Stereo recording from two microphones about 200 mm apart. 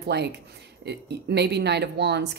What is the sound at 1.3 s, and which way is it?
Speech, 55° right (ahead or behind).